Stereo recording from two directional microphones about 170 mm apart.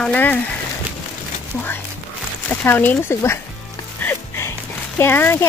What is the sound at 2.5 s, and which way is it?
Speech, 10° left (ahead or behind).